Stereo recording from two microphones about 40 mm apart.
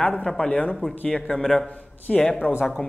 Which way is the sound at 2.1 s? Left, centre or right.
Left.